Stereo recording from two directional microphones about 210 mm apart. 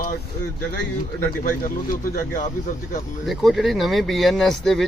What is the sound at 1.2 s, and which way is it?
Speech, 40° left (ahead or behind).